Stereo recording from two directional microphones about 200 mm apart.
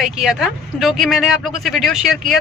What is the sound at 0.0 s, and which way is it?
Speech, centre (ahead or behind).